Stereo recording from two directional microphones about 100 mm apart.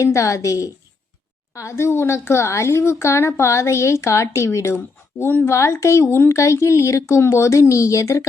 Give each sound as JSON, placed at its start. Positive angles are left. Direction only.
{"t": 0.0, "sound": "a woman's voice", "side_deg": 30}